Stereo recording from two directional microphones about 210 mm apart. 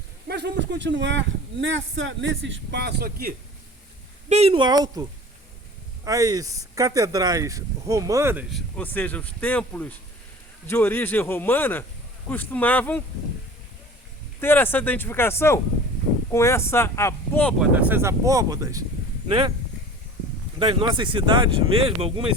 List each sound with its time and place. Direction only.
0.3 s a man's voice: 50° right (ahead or behind)
4.3 s speech: 30° right (ahead or behind)
6.1 s a man's voice: 15° right (ahead or behind); by 13.0 s 10° left (ahead or behind)
14.4 s a man's voice: 10° left (ahead or behind)
17.6 s speech: 5° right (ahead or behind); by 19.5 s 25° right (ahead or behind)
20.6 s speech: 25° right (ahead or behind)